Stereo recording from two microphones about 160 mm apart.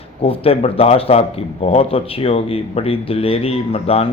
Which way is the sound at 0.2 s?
35° left (ahead or behind).